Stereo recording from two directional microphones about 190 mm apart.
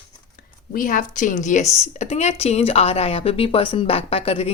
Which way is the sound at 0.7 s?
45° left (ahead or behind).